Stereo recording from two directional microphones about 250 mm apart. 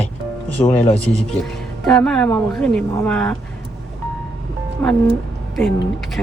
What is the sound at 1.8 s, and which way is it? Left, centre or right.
Speech, centre.